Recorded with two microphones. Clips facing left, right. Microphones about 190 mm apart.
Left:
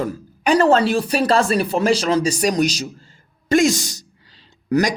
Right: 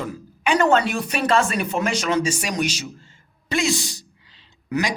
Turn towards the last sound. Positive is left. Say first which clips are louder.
# left 6 dB
turn(degrees=40)  # may be behind; listen again after turning